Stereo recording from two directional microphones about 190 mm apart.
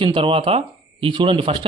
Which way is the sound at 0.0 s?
30° right (ahead or behind).